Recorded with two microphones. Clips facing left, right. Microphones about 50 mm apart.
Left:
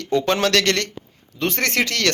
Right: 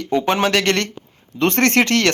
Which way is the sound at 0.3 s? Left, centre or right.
Centre.